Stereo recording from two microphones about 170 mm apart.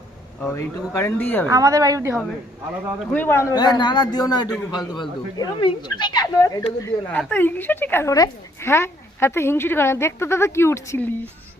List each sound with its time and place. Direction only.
0.3 s speech: 10° left (ahead or behind)
1.5 s a woman's voice: 20° right (ahead or behind)
3.1 s speech: 10° left (ahead or behind)
6.8 s speech: 10° left (ahead or behind)